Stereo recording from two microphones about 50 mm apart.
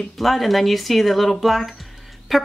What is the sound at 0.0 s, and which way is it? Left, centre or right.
Speech, centre.